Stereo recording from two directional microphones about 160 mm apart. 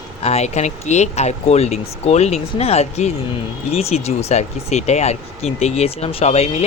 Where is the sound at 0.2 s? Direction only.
40° left (ahead or behind).